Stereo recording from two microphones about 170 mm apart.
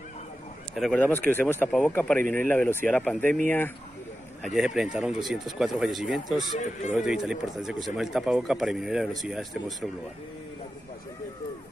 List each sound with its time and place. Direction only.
0.7 s speech: 5° left (ahead or behind)
4.6 s speech: 5° right (ahead or behind)
6.6 s speech: 45° left (ahead or behind)
7.0 s speech: 5° right (ahead or behind)